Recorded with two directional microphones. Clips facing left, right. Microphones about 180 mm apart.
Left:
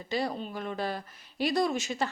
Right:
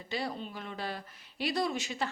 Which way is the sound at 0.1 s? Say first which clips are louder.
Left 5 dB; 45° left (ahead or behind).